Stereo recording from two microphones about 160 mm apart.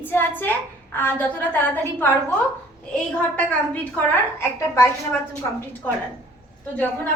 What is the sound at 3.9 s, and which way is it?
A woman's voice, 15° left (ahead or behind).